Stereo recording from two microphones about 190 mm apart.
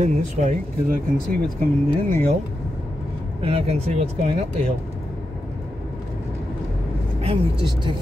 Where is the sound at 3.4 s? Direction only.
30° right (ahead or behind).